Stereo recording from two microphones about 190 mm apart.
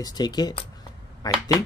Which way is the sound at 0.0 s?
20° left (ahead or behind).